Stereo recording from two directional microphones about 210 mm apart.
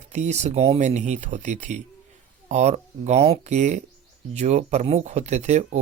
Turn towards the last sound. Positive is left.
turn(degrees=-35)  # may be behind; listen again after turning